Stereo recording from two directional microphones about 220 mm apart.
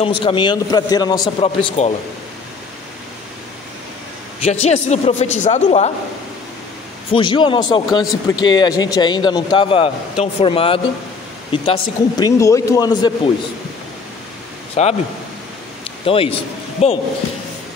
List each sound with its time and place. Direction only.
0.0 s speech: 25° left (ahead or behind)
4.4 s a man's voice: 30° left (ahead or behind)
7.1 s a man's voice: 20° left (ahead or behind)
14.8 s speech: 30° left (ahead or behind)
16.1 s speech: 25° left (ahead or behind)